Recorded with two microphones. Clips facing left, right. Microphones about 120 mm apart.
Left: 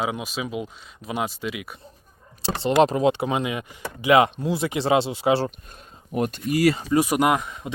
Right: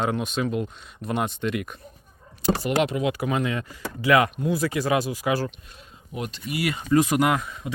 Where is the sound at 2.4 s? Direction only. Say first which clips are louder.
Left 4 dB; 30° left (ahead or behind).